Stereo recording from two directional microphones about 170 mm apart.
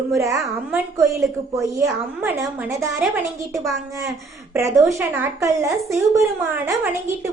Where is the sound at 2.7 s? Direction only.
15° right (ahead or behind).